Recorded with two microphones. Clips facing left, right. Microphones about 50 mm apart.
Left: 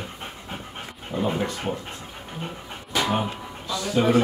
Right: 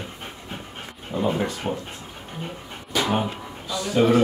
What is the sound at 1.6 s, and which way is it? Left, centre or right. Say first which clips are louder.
Speech: right 1 dB; centre.